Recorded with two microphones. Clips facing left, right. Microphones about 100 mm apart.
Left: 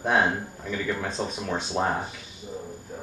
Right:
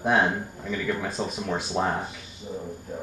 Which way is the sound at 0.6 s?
5° right (ahead or behind).